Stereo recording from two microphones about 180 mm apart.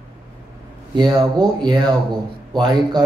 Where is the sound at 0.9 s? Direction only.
25° right (ahead or behind).